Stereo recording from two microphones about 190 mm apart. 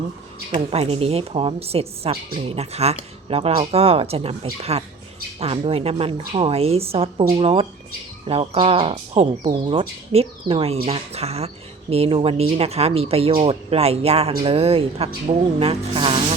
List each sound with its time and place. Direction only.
0.5 s speech: 30° right (ahead or behind)